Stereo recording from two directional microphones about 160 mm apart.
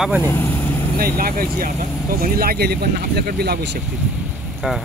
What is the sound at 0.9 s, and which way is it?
Speech, 65° right (ahead or behind).